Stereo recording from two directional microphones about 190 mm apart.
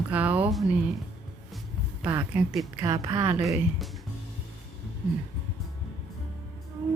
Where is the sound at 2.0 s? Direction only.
10° right (ahead or behind).